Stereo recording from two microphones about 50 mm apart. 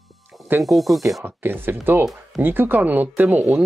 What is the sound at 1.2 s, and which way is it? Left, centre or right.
Speech, right.